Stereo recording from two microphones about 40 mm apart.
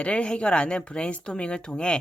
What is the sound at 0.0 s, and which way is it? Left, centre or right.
Speech, left.